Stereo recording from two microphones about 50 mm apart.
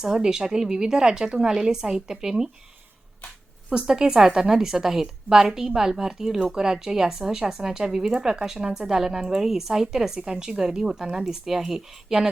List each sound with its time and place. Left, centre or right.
0.0 s a woman's voice: centre
3.7 s a woman's voice: centre